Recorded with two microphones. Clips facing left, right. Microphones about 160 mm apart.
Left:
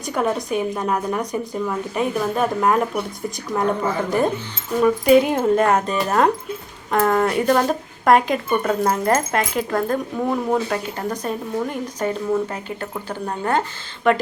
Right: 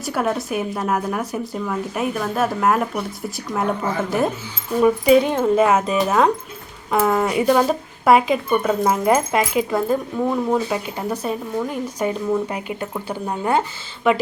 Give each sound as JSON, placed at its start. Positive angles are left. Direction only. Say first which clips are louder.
{"t": 0.0, "sound": "a woman's voice", "louder": "even", "side_deg": -5}
{"t": 4.8, "sound": "a woman's voice", "louder": "even", "side_deg": 0}